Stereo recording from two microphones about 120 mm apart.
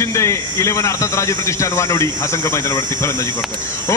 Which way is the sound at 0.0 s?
25° left (ahead or behind).